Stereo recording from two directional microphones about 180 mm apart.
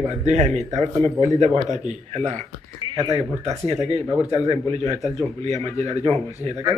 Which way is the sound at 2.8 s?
20° right (ahead or behind).